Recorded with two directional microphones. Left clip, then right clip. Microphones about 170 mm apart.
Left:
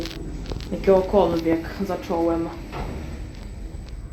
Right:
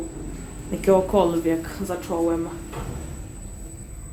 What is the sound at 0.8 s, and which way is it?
Speech, 20° right (ahead or behind).